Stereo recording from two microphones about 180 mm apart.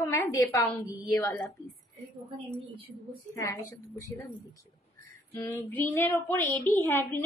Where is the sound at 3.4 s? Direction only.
15° left (ahead or behind).